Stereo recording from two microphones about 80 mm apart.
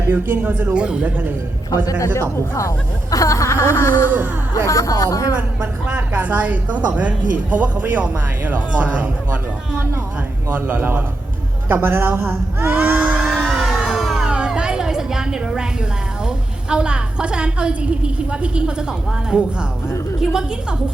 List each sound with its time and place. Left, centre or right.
0.1 s a woman's voice: right
0.7 s a woman's voice: centre
1.7 s speech: left
5.4 s a woman's voice: centre
12.7 s a sound: centre
16.2 s a woman's voice: centre